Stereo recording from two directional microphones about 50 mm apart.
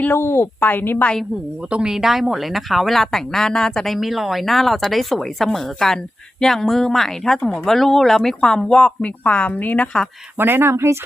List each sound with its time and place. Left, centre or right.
0.1 s speech: left
0.7 s speech: left
1.7 s speech: centre
3.9 s speech: centre; by 9.5 s left
9.5 s speech: left
10.3 s speech: right